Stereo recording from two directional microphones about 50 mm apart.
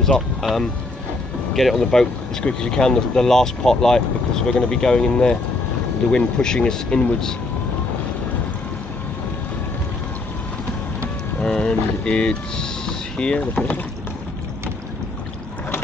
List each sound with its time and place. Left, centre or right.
0.4 s speech: centre
11.3 s vehicle: centre